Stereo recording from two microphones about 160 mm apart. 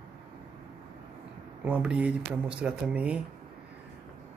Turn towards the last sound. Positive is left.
turn(degrees=-5)  # may be behind; listen again after turning